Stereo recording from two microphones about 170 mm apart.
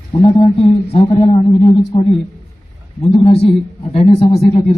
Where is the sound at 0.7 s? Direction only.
35° left (ahead or behind).